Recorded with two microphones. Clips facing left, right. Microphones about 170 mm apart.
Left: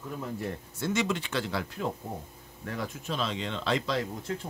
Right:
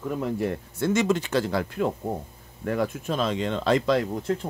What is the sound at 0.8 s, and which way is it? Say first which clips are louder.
Speech: right 6 dB; 45° right (ahead or behind).